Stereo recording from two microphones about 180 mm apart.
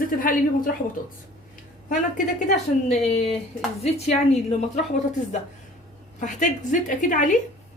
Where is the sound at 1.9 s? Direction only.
45° left (ahead or behind).